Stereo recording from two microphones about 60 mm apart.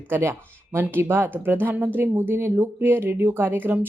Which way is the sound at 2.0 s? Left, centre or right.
Right.